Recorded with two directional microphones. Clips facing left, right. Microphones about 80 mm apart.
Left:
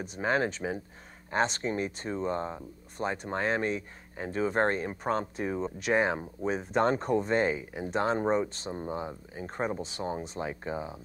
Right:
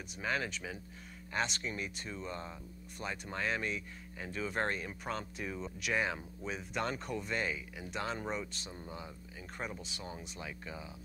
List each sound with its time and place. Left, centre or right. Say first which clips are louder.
0.0 s speech: left 8 dB; left